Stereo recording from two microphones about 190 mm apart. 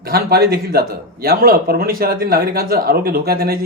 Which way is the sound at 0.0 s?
55° right (ahead or behind).